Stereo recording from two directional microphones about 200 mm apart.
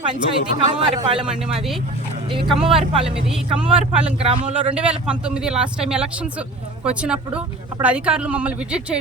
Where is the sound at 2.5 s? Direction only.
Centre (ahead or behind).